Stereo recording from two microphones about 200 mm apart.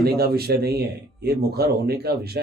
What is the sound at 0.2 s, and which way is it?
Speech, 50° right (ahead or behind).